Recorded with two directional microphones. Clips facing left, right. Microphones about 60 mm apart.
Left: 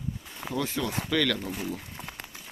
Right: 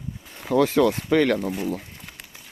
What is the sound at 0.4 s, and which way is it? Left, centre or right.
Speech, right.